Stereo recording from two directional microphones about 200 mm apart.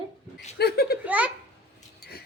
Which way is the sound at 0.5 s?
50° left (ahead or behind).